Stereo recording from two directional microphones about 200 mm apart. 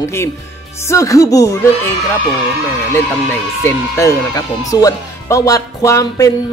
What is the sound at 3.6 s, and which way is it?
Speech, 15° left (ahead or behind).